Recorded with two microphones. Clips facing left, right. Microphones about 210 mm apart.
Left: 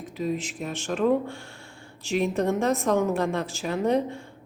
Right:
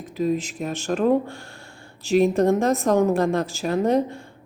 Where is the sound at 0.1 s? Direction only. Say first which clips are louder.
Right 6 dB; 40° right (ahead or behind).